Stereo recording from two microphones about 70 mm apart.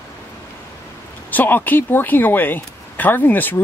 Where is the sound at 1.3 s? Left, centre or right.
Left.